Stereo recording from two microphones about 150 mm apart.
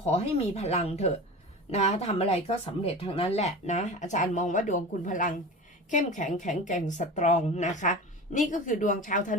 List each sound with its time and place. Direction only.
0.0 s a woman's voice: 45° left (ahead or behind); by 9.4 s 60° left (ahead or behind)